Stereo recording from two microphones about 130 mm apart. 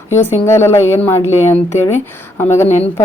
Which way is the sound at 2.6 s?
60° left (ahead or behind).